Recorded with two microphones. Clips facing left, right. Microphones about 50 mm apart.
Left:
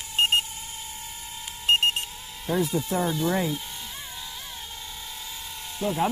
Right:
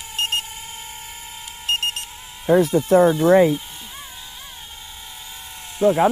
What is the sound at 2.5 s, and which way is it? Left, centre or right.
Speech, right.